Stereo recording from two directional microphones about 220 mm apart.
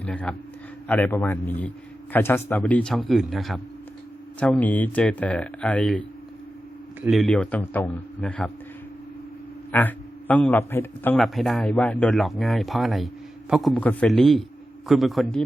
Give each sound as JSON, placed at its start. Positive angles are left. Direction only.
{"t": 0.0, "sound": "a man's voice", "side_deg": 5}
{"t": 9.7, "sound": "speech", "side_deg": 5}